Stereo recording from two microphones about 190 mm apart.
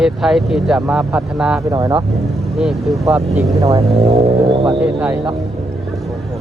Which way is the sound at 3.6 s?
15° right (ahead or behind).